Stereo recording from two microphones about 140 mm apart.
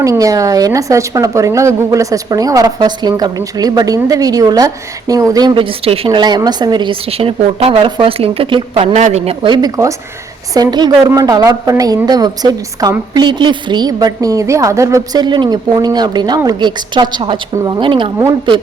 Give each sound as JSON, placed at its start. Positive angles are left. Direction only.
{"t": 0.0, "sound": "a woman's voice", "side_deg": -25}
{"t": 5.5, "sound": "speech", "side_deg": -40}
{"t": 6.1, "sound": "a woman's voice", "side_deg": -30}
{"t": 9.4, "sound": "a woman's voice", "side_deg": -30}